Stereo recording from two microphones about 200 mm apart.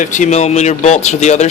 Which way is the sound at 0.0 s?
40° left (ahead or behind).